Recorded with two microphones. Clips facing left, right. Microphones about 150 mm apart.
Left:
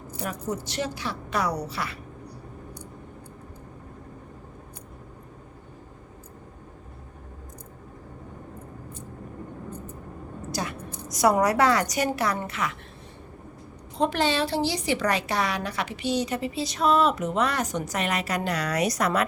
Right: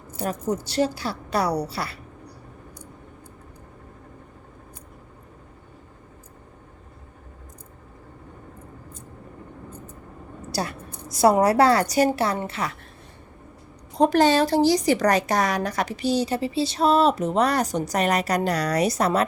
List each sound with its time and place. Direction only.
0.4 s a woman's voice: 35° right (ahead or behind)
10.5 s a woman's voice: 35° right (ahead or behind)
14.0 s a woman's voice: 40° right (ahead or behind)